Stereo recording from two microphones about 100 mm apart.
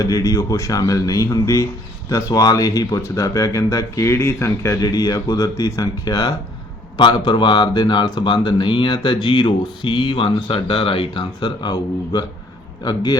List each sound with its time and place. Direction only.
0.0 s speech: 35° left (ahead or behind)